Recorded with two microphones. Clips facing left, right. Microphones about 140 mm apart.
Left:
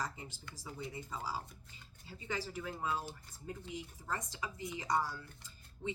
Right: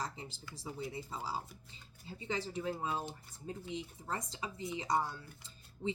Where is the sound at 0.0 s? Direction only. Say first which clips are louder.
Even; 30° right (ahead or behind).